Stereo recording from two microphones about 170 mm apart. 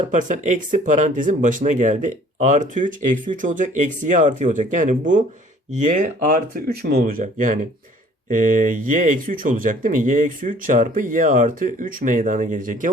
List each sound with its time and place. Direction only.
0.1 s speech: 45° right (ahead or behind)